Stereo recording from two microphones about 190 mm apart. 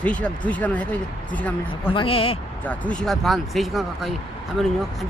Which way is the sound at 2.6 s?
10° left (ahead or behind).